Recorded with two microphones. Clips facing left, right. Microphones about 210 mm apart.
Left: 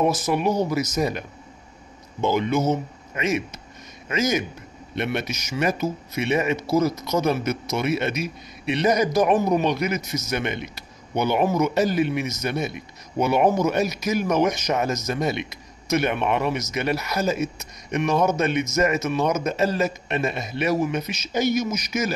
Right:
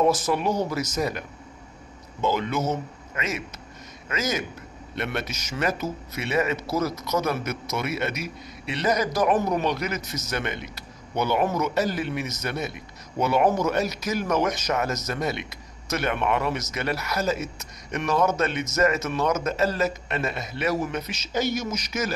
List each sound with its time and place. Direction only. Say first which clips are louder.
0.2 s a man's voice: left 2 dB; 10° left (ahead or behind)
2.2 s a man's voice: left 4 dB; 20° left (ahead or behind)